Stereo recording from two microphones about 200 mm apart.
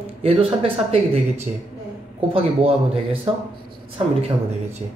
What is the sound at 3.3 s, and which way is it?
Speech, 25° right (ahead or behind).